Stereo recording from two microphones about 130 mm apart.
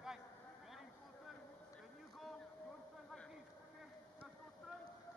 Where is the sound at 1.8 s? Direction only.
Centre (ahead or behind).